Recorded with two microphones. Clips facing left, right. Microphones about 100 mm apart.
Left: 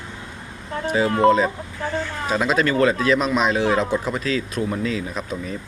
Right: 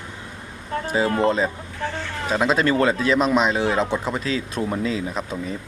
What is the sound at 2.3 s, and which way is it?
Speech, 20° right (ahead or behind).